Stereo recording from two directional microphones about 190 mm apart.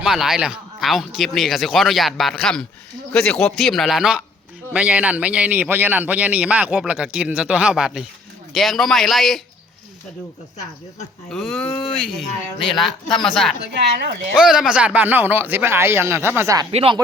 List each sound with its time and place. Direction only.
0.0 s a man's voice: centre (ahead or behind)
11.3 s speech: centre (ahead or behind)
13.7 s a woman's voice: 60° right (ahead or behind)
14.3 s a man's voice: 5° right (ahead or behind)
16.7 s speech: 30° right (ahead or behind)